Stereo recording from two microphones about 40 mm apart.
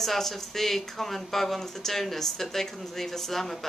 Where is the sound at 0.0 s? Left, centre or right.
Centre.